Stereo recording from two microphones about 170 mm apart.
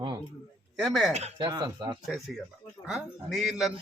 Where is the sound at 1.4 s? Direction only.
25° right (ahead or behind).